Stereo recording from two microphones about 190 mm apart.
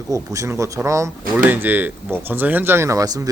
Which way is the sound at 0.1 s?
15° right (ahead or behind).